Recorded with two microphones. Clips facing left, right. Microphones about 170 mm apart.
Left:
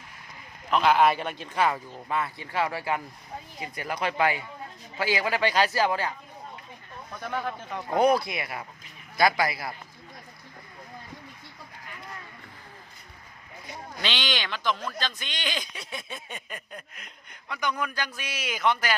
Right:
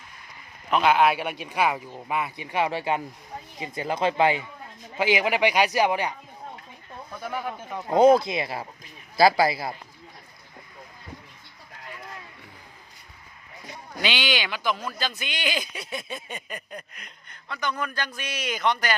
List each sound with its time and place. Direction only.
0.7 s speech: 5° right (ahead or behind); by 9.7 s 25° right (ahead or behind)
14.0 s a man's voice: 10° right (ahead or behind)